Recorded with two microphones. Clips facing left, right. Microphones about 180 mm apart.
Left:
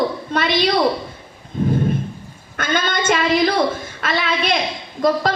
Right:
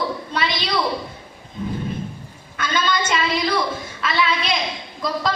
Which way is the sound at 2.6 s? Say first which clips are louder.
Left 1 dB; 50° left (ahead or behind).